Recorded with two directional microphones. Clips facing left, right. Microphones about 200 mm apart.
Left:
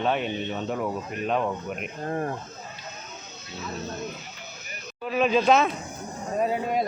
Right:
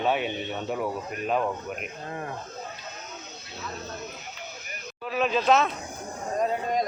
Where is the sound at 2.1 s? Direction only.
40° left (ahead or behind).